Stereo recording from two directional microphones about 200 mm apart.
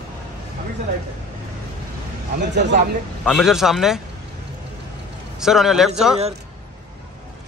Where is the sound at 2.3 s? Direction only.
60° right (ahead or behind).